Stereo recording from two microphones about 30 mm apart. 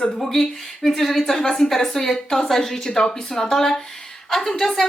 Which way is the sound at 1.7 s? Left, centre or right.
Centre.